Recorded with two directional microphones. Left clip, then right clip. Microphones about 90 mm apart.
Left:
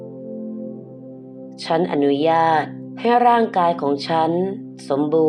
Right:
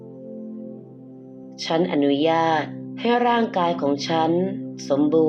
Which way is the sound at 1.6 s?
75° left (ahead or behind).